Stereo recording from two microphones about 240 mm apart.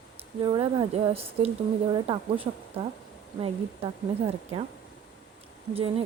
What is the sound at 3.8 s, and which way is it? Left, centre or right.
Speech, right.